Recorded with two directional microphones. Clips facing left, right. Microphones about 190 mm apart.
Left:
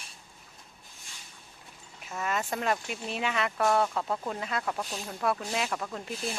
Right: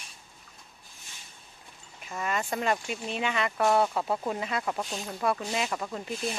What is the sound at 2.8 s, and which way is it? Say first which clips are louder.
Speech: right 1 dB; centre (ahead or behind).